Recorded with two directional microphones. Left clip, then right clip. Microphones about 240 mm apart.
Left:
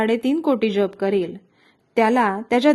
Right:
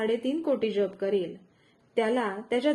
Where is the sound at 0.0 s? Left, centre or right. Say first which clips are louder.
Left 8 dB; left.